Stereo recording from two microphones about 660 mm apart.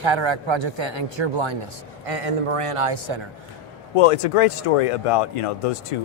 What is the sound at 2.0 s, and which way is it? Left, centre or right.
A man's voice, right.